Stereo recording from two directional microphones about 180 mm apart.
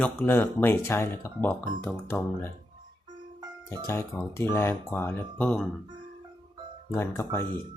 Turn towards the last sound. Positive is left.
turn(degrees=10)  # may be behind; listen again after turning